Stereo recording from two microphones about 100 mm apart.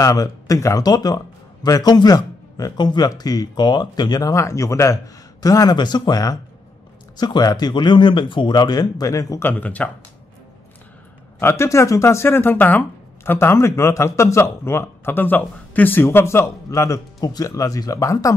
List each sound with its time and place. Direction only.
0.0 s speech: 35° left (ahead or behind)
9.4 s speech: 20° left (ahead or behind)
11.3 s speech: 25° left (ahead or behind)